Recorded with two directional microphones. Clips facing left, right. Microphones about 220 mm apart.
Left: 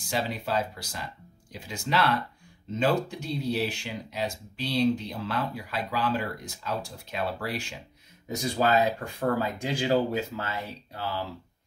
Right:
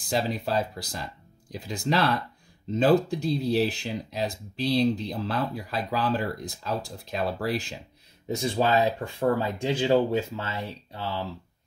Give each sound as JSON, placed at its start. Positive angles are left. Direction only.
{"t": 0.0, "sound": "speech", "side_deg": -35}
{"t": 8.4, "sound": "speech", "side_deg": -25}